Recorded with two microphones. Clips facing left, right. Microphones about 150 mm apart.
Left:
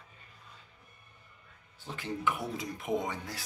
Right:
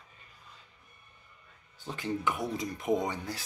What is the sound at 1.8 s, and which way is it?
A man's voice, centre (ahead or behind).